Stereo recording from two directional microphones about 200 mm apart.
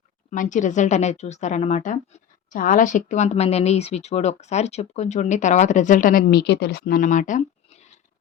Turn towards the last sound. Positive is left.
turn(degrees=40)  # may be behind; listen again after turning